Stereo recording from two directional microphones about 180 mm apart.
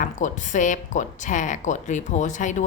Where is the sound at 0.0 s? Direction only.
45° left (ahead or behind).